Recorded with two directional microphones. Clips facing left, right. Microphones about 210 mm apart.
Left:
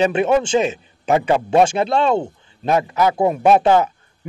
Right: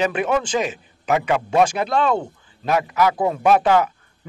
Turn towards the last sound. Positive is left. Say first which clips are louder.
# left 2 dB
turn(degrees=25)  # may be behind; listen again after turning